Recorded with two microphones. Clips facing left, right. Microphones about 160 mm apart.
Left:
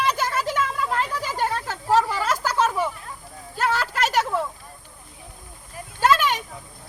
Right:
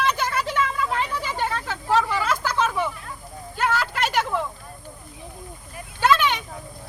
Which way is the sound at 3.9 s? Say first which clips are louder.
Left 1 dB; 40° left (ahead or behind).